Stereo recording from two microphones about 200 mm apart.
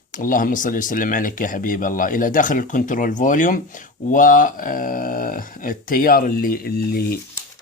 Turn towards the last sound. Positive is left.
turn(degrees=50)  # may be behind; listen again after turning